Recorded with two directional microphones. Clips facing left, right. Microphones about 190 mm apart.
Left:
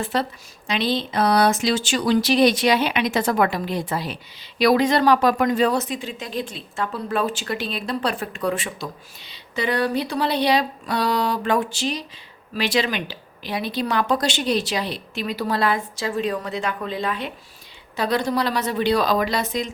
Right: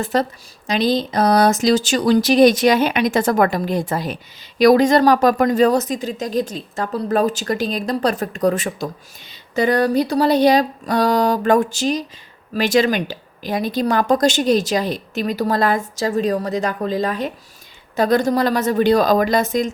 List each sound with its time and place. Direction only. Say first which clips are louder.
0.0 s speech: right 5 dB; 45° right (ahead or behind)